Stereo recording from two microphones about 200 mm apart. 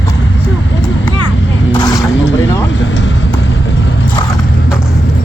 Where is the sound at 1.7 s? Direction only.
20° left (ahead or behind).